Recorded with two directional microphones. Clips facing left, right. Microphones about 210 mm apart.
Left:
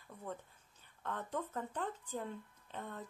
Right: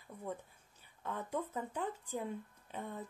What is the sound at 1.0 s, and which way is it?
Speech, 10° right (ahead or behind).